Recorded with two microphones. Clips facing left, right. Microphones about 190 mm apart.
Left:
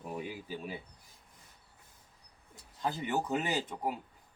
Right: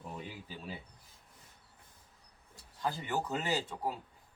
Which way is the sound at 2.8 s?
20° left (ahead or behind).